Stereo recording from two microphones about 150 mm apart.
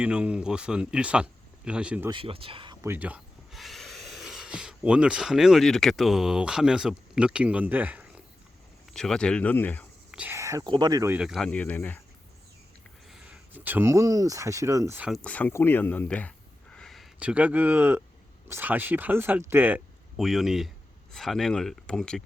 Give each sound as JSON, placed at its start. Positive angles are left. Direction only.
{"t": 0.0, "sound": "speech", "side_deg": -5}
{"t": 2.0, "sound": "speech", "side_deg": -35}
{"t": 2.8, "sound": "speech", "side_deg": -15}
{"t": 8.9, "sound": "speech", "side_deg": 5}
{"t": 10.1, "sound": "whispering", "side_deg": -10}
{"t": 10.3, "sound": "speech", "side_deg": -20}
{"t": 11.1, "sound": "speech", "side_deg": -5}
{"t": 13.1, "sound": "speech", "side_deg": -5}
{"t": 15.1, "sound": "speech", "side_deg": 10}
{"t": 20.1, "sound": "speech", "side_deg": 0}